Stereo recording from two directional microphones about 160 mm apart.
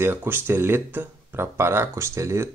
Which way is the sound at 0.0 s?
15° right (ahead or behind).